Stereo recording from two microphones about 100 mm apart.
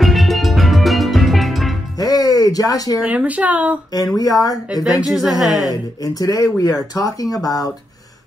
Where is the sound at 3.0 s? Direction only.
15° right (ahead or behind).